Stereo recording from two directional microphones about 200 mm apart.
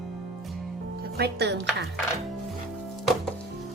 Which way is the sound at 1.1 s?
55° right (ahead or behind).